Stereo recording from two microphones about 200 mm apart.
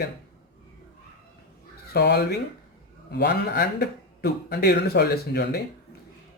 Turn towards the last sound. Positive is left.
turn(degrees=55)  # may be behind; listen again after turning